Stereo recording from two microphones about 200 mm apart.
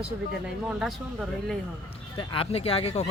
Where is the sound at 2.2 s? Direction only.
25° left (ahead or behind).